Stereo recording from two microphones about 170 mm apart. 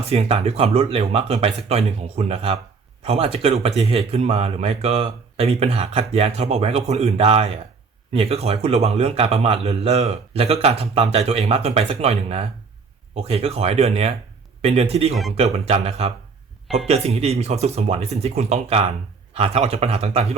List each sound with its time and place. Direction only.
0.0 s speech: 35° right (ahead or behind)